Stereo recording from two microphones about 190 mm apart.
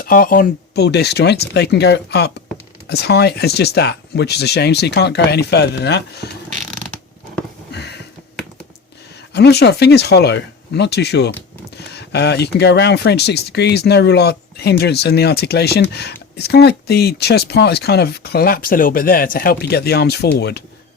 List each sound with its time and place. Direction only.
0.0 s speech: 50° left (ahead or behind)
7.7 s a sound: 60° left (ahead or behind)
9.3 s speech: 60° left (ahead or behind)